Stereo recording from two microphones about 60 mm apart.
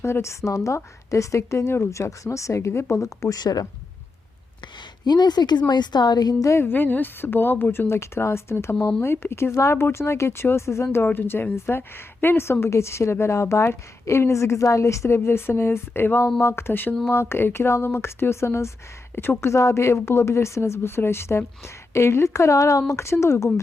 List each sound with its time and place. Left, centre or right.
0.0 s a woman's voice: left
6.1 s a woman's voice: left
6.6 s a woman's voice: left
10.9 s a woman's voice: left
19.1 s a woman's voice: left